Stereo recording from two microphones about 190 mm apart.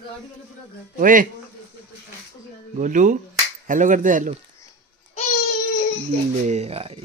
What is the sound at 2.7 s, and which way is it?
Speech, 40° right (ahead or behind).